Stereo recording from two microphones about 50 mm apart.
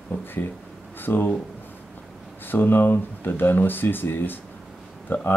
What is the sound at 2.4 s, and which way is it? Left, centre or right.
Speech, left.